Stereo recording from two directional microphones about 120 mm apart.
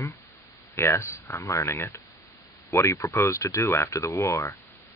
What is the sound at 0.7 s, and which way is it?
Speech, 20° left (ahead or behind).